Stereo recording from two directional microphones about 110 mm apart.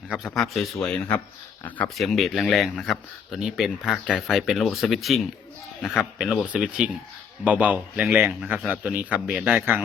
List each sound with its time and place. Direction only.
0.3 s a man's voice: centre (ahead or behind); by 9.8 s 15° right (ahead or behind)